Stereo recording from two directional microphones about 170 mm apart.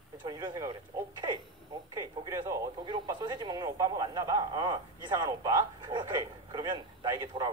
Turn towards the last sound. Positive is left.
turn(degrees=-20)  # may be behind; listen again after turning